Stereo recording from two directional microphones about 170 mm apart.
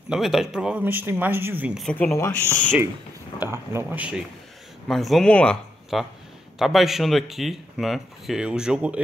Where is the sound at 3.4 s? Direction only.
15° right (ahead or behind).